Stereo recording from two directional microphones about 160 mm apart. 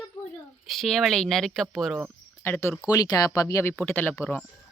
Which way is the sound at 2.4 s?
15° left (ahead or behind).